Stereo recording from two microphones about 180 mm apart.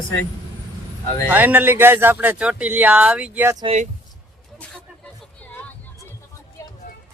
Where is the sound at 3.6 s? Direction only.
35° right (ahead or behind).